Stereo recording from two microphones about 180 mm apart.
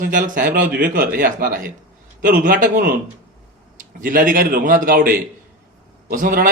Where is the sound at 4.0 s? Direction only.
50° right (ahead or behind).